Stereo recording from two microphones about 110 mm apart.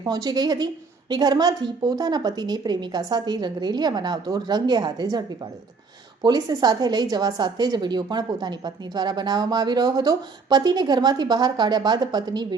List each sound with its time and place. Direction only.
0.0 s a woman's voice: 35° right (ahead or behind)
6.2 s a woman's voice: 35° right (ahead or behind)